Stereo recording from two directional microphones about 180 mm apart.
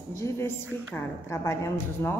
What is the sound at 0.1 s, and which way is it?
A woman's voice, 15° left (ahead or behind).